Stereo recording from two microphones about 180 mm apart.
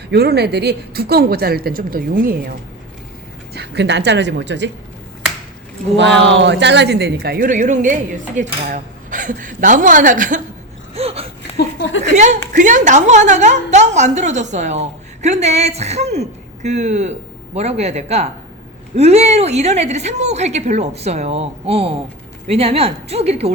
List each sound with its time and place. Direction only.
0.1 s a woman's voice: 65° right (ahead or behind)
3.5 s speech: 70° right (ahead or behind)
6.0 s speech: 85° right; by 7.5 s 65° right (ahead or behind)
7.5 s a woman's voice: 45° right (ahead or behind)
10.9 s a woman's voice: 35° right (ahead or behind)
11.5 s a sound: 75° left (ahead or behind)
12.1 s a woman's voice: 40° right (ahead or behind)